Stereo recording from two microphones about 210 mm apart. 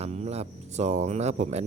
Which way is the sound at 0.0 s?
30° right (ahead or behind).